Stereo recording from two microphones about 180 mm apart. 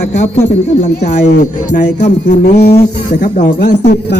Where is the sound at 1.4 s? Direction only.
40° left (ahead or behind).